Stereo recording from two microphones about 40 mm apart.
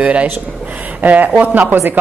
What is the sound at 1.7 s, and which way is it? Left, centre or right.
Speech, right.